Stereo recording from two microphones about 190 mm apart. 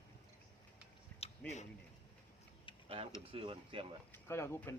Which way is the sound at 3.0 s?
30° right (ahead or behind).